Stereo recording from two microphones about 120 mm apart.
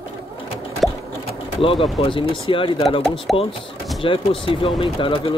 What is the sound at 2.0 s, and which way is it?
Speech, 45° left (ahead or behind).